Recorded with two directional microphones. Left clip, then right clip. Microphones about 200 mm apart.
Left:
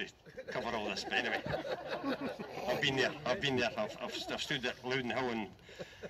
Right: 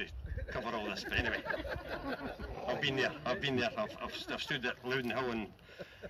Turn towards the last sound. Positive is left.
turn(degrees=0)  # may be behind; listen again after turning